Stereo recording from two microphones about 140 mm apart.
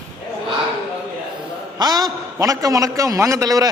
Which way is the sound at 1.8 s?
30° right (ahead or behind).